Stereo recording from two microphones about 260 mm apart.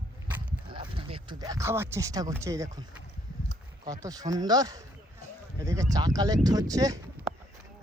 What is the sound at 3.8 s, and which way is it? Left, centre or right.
Speech, centre.